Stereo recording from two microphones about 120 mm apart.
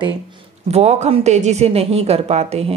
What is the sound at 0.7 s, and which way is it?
A woman's voice, 65° right (ahead or behind).